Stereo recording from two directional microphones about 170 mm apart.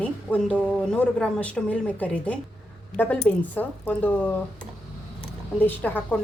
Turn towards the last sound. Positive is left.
turn(degrees=10)  # may be behind; listen again after turning